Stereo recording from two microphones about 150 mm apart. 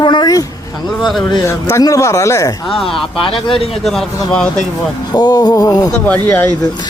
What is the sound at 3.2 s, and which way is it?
Speech, 35° left (ahead or behind).